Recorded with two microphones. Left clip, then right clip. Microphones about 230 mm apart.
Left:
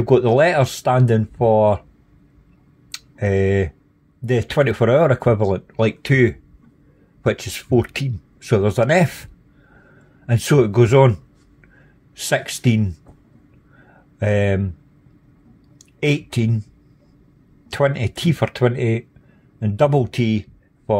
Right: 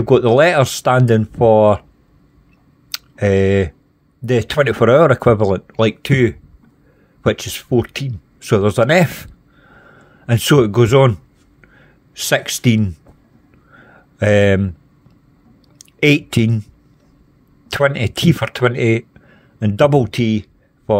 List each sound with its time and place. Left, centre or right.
0.0 s speech: centre
2.9 s speech: right
10.2 s speech: right
13.7 s a sound: right
15.8 s speech: right
17.6 s speech: right